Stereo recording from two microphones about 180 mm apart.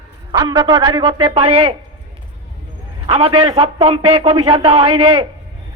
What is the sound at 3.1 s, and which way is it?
A man's voice, 30° right (ahead or behind).